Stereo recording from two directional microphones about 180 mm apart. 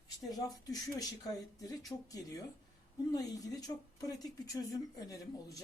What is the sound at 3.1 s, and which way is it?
Speech, 20° left (ahead or behind).